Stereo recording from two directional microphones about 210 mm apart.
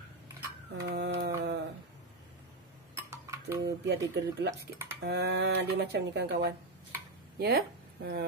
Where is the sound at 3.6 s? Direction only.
55° right (ahead or behind).